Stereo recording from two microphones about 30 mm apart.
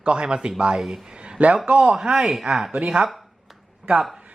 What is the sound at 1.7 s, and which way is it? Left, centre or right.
Speech, right.